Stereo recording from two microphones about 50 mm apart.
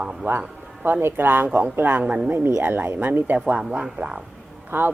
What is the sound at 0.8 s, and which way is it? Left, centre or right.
Speech, right.